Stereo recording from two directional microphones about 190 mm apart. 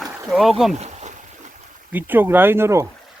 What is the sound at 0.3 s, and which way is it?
Speech, centre (ahead or behind).